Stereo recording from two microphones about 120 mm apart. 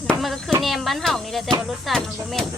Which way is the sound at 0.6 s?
Centre (ahead or behind).